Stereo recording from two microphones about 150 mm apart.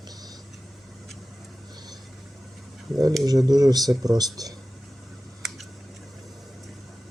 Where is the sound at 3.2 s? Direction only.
25° right (ahead or behind).